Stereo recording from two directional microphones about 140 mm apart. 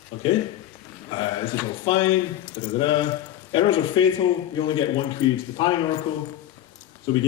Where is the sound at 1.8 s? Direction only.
35° left (ahead or behind).